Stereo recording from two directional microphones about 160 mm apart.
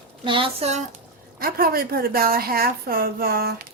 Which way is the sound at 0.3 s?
35° right (ahead or behind).